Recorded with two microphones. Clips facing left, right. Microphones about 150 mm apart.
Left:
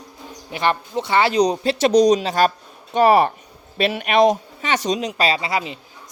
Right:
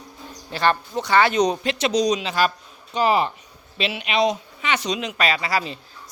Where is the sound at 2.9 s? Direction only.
55° left (ahead or behind).